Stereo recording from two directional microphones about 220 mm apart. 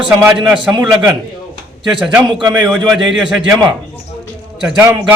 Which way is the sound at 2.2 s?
20° right (ahead or behind).